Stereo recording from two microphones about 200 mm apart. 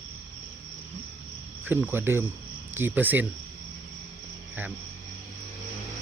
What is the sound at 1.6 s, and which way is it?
Cricket, 10° right (ahead or behind).